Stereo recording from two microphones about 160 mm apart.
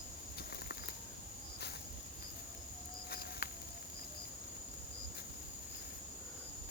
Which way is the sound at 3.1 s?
75° left (ahead or behind).